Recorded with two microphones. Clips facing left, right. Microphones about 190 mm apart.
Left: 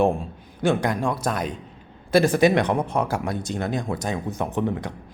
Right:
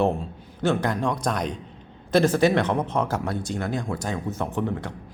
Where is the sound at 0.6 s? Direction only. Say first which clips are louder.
Left 1 dB; 15° left (ahead or behind).